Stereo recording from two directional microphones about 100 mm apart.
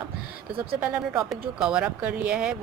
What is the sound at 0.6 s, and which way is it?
Speech, 10° right (ahead or behind).